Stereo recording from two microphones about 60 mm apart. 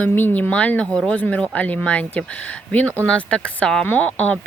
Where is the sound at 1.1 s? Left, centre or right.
Left.